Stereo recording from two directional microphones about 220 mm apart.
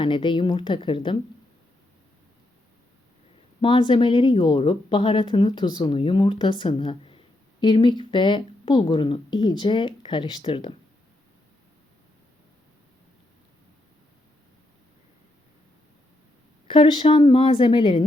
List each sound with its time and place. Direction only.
0.0 s a woman's voice: 20° left (ahead or behind)
3.6 s a woman's voice: 20° left (ahead or behind)
16.6 s a woman's voice: 20° left (ahead or behind)